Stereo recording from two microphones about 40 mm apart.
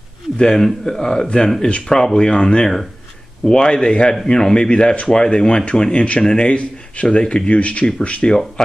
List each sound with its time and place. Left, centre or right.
0.4 s a man's voice: centre; by 1.5 s left
1.9 s a man's voice: centre; by 8.3 s left
8.6 s a man's voice: centre